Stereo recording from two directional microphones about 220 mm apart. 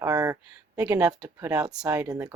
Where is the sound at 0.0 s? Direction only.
15° right (ahead or behind).